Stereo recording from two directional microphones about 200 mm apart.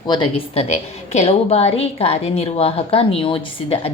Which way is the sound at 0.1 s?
25° left (ahead or behind).